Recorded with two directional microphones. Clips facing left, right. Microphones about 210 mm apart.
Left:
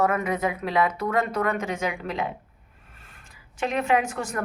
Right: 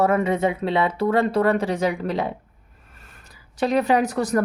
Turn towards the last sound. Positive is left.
turn(degrees=-40)  # may be behind; listen again after turning